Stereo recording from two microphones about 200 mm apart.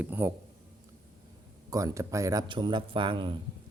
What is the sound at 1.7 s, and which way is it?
A man's voice, 15° right (ahead or behind).